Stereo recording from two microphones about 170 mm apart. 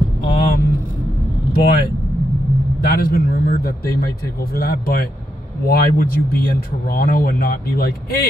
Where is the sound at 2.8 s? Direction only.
60° left (ahead or behind).